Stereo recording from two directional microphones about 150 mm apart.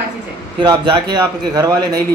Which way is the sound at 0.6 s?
30° right (ahead or behind).